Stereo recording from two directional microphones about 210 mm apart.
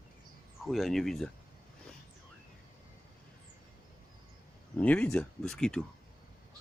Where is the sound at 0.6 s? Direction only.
Centre (ahead or behind).